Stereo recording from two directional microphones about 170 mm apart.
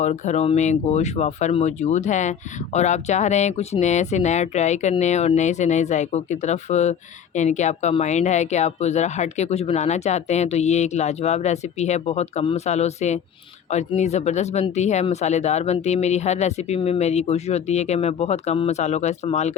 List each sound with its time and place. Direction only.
0.0 s speech: 45° left (ahead or behind)